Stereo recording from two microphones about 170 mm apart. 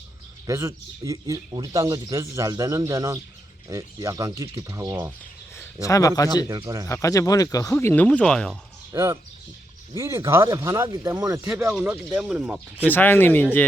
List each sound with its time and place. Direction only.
0.4 s speech: 20° right (ahead or behind)
5.5 s speech: 20° left (ahead or behind)
6.5 s speech: 20° right (ahead or behind)
6.8 s speech: 20° left (ahead or behind)
8.9 s speech: 15° right (ahead or behind)
11.4 s speech: 10° right (ahead or behind)
12.8 s speech: 10° left (ahead or behind)